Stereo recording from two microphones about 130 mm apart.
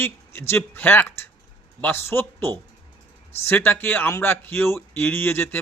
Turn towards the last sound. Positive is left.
turn(degrees=15)  # may be behind; listen again after turning